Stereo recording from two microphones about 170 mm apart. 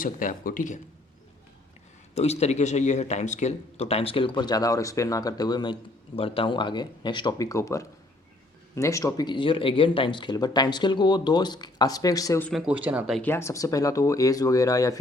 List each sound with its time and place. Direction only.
0.0 s speech: 55° left (ahead or behind)
2.1 s speech: 40° left (ahead or behind); by 12.5 s 20° left (ahead or behind)
12.5 s speech: 5° right (ahead or behind)
13.2 s speech: 15° left (ahead or behind)